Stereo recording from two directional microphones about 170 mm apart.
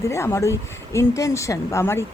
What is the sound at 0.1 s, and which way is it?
A woman's voice, 15° left (ahead or behind).